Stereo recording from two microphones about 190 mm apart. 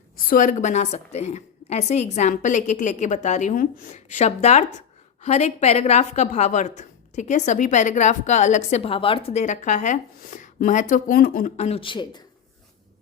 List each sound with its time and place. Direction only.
0.2 s a woman's voice: 45° left (ahead or behind); by 12.2 s 25° left (ahead or behind)